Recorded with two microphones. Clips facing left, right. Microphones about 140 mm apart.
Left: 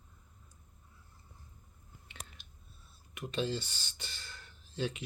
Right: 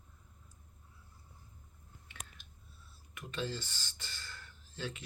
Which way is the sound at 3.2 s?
20° left (ahead or behind).